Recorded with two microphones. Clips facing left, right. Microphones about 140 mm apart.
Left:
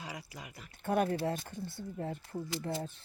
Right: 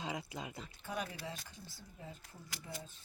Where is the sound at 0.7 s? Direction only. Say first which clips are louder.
Left 14 dB; 55° left (ahead or behind).